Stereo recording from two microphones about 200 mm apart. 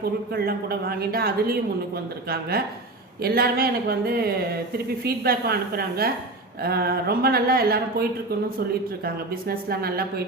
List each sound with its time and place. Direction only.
0.3 s speech: 50° right (ahead or behind)
3.2 s speech: 50° right (ahead or behind)
9.0 s speech: 50° right (ahead or behind)